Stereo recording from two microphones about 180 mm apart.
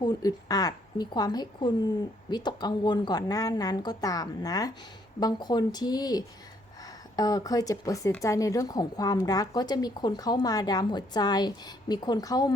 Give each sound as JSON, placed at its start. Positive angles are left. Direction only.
{"t": 0.0, "sound": "speech", "side_deg": 20}